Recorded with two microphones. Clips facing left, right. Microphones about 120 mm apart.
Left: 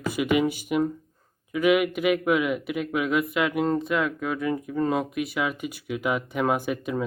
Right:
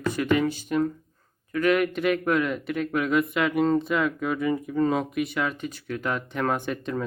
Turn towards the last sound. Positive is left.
turn(degrees=5)  # may be behind; listen again after turning